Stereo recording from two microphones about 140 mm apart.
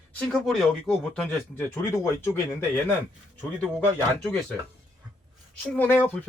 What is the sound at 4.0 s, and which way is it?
Speech, 10° left (ahead or behind).